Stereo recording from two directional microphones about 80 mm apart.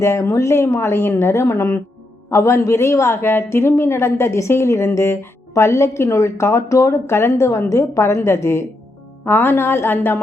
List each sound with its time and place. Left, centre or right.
0.0 s a woman's voice: left
9.2 s a woman's voice: left